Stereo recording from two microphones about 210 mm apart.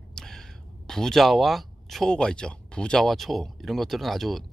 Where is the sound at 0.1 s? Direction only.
Centre (ahead or behind).